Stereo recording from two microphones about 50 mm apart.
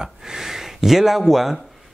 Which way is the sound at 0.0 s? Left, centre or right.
Centre.